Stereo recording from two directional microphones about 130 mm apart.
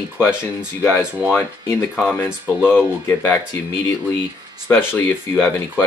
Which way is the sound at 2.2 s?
10° right (ahead or behind).